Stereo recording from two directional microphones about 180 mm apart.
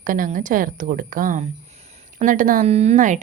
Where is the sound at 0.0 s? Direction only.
50° right (ahead or behind).